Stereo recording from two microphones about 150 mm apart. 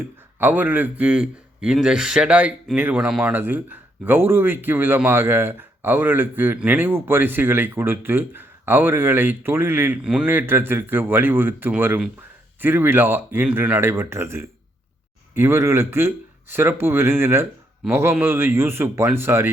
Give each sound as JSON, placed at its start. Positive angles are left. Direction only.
{"t": 0.3, "sound": "a man's voice", "side_deg": -10}